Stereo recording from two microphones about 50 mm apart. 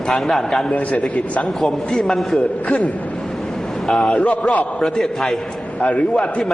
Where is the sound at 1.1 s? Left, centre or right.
Left.